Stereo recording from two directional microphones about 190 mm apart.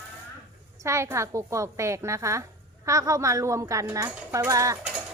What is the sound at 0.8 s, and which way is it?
Speech, 15° right (ahead or behind).